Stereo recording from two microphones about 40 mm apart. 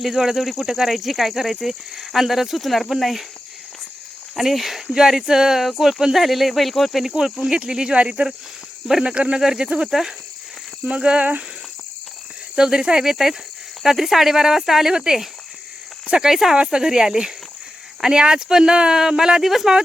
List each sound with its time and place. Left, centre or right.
0.0 s speech: centre
4.4 s speech: centre
7.1 s speech: centre
9.4 s speech: centre
9.6 s speech: right
12.5 s speech: centre